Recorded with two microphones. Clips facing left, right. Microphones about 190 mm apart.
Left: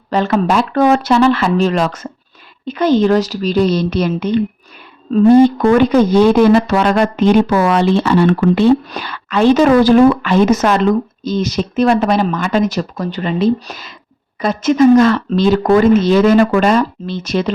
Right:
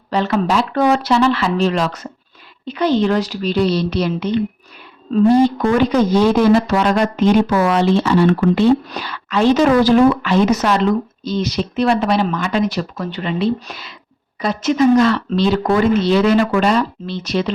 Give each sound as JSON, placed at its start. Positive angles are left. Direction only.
{"t": 0.1, "sound": "a man's voice", "side_deg": 45}